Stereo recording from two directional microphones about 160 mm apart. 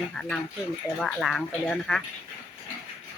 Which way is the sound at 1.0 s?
Centre (ahead or behind).